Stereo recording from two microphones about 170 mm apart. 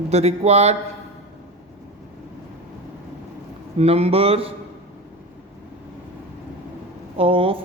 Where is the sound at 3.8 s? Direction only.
35° right (ahead or behind).